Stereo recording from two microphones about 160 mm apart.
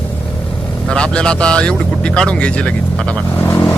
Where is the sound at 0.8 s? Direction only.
5° left (ahead or behind).